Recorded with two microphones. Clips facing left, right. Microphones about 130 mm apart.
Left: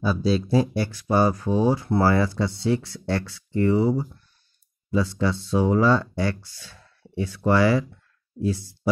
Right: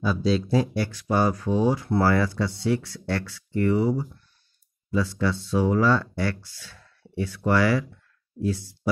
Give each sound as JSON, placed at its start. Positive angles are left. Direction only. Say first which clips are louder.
{"t": 0.0, "sound": "speech", "louder": "left 1 dB", "side_deg": 10}